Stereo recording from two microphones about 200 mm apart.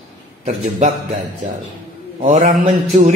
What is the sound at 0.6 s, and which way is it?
Speech, 35° right (ahead or behind).